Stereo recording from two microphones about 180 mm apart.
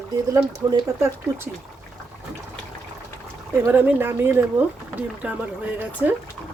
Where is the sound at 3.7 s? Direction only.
10° right (ahead or behind).